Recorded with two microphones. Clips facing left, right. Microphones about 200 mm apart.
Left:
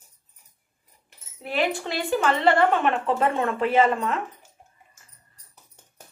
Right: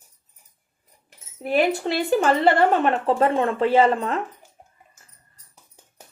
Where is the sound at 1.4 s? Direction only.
40° right (ahead or behind).